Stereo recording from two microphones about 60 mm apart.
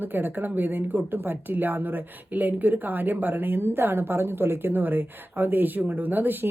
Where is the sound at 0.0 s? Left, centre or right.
Right.